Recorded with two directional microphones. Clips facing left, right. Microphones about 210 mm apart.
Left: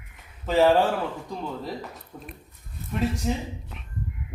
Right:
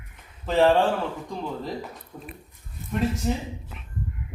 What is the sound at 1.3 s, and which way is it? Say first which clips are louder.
Speech: right 1 dB; centre (ahead or behind).